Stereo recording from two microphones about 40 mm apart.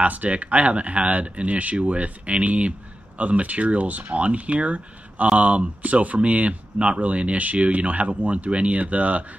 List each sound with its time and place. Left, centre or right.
0.0 s speech: right